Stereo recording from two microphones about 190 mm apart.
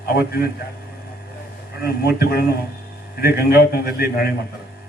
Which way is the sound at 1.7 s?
55° left (ahead or behind).